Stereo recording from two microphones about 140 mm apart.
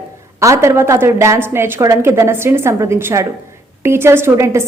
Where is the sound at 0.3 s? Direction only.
20° right (ahead or behind).